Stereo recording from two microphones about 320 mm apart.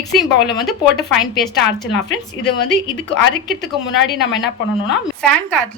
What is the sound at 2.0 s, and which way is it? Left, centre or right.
Speech, left.